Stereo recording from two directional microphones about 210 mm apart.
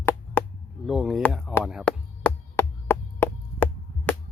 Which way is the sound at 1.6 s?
Centre (ahead or behind).